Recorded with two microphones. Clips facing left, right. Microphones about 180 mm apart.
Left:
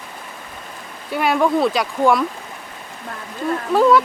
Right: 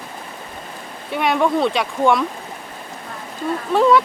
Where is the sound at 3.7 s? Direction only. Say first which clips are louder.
Even; centre (ahead or behind).